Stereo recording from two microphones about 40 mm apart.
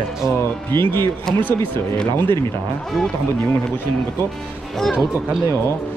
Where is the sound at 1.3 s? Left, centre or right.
Centre.